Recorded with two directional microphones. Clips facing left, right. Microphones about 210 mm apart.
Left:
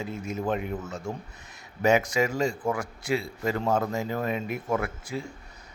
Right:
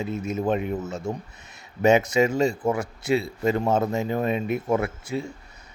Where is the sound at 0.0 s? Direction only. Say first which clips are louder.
Right 5 dB; 20° right (ahead or behind).